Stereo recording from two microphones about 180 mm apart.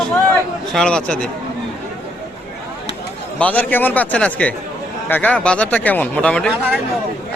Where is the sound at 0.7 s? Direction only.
5° left (ahead or behind).